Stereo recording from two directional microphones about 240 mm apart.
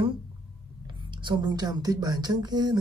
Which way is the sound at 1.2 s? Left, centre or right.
Centre.